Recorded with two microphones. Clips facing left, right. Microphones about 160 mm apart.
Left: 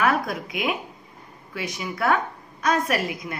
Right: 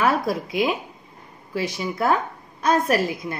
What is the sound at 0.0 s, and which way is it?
Speech, 30° right (ahead or behind).